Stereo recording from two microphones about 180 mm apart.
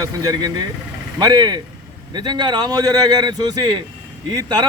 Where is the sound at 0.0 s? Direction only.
20° right (ahead or behind).